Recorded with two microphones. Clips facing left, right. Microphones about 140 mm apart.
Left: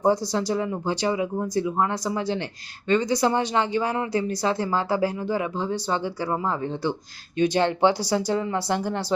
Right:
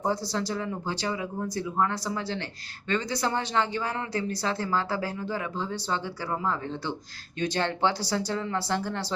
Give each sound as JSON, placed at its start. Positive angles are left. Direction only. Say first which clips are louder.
{"t": 0.0, "sound": "speech", "louder": "left 6 dB", "side_deg": 15}